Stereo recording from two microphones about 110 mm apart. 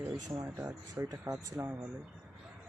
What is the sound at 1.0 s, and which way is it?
Speech, 30° right (ahead or behind).